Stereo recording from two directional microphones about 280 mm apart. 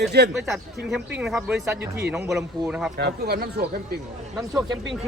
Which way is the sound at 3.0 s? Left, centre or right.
Right.